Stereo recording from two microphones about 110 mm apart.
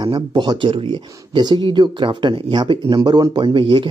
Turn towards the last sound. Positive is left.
turn(degrees=-50)  # may be behind; listen again after turning